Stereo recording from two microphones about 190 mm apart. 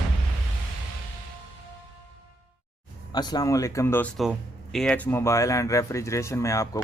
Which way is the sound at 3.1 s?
20° left (ahead or behind).